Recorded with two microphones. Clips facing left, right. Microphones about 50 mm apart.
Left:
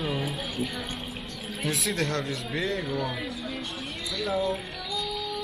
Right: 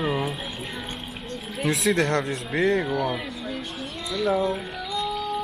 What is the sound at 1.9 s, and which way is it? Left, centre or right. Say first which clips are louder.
Speech: right 5 dB; right.